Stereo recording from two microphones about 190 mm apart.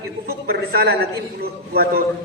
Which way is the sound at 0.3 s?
55° right (ahead or behind).